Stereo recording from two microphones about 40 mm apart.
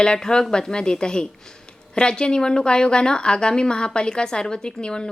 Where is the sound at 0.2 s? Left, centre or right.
Centre.